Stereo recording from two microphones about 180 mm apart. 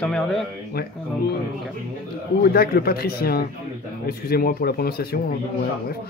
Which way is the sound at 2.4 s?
60° left (ahead or behind).